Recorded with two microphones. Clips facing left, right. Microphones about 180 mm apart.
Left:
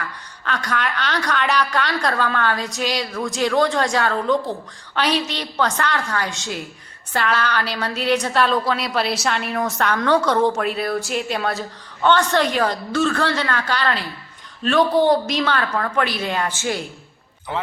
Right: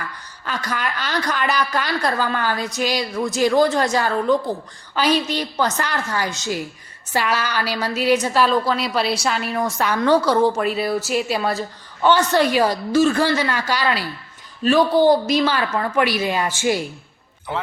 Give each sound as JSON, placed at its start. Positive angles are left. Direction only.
{"t": 0.4, "sound": "a woman's voice", "side_deg": -5}